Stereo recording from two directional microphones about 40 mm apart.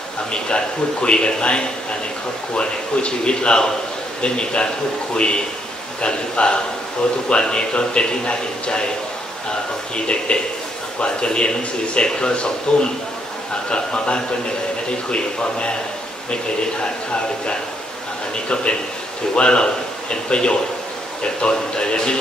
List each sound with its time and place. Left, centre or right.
1.0 s a man's voice: left
9.9 s a man's voice: left
18.5 s a man's voice: left